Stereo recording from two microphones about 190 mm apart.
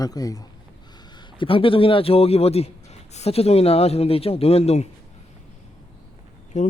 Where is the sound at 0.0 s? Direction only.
20° left (ahead or behind); by 4.9 s 35° left (ahead or behind).